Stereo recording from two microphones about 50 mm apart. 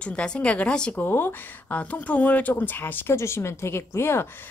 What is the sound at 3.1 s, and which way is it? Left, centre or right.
A woman's voice, left.